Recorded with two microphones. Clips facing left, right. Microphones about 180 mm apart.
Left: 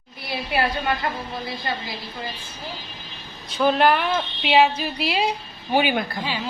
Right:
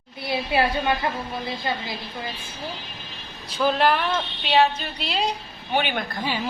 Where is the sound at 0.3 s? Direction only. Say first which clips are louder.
Right 2 dB; 25° right (ahead or behind).